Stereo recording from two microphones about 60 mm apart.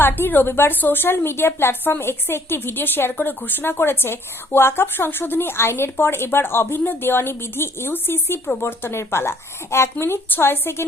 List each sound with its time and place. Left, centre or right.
0.0 s a woman's voice: left